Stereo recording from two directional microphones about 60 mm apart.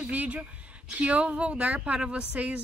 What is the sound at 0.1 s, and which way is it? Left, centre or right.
Speech, right.